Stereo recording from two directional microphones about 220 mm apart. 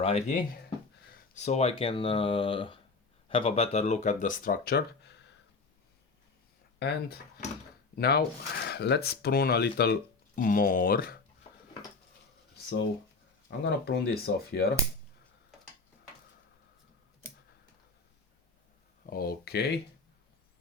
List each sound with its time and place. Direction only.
0.0 s speech: 30° left (ahead or behind); by 5.3 s 45° left (ahead or behind)
6.7 s speech: 50° left (ahead or behind)
13.7 s speech: 50° left (ahead or behind)
19.1 s speech: 40° left (ahead or behind)